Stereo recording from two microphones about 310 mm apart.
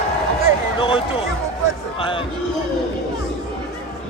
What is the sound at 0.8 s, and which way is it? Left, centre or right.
Speech, centre.